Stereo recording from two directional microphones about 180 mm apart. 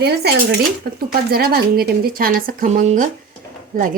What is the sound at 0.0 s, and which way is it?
Speech, 65° right (ahead or behind).